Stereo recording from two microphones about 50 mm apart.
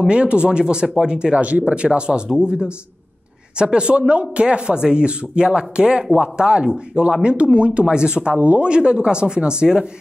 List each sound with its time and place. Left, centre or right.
0.0 s speech: right